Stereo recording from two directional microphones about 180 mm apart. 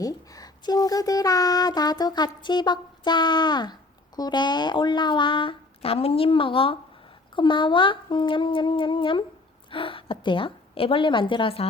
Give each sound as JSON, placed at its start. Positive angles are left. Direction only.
{"t": 0.0, "sound": "speech", "side_deg": 20}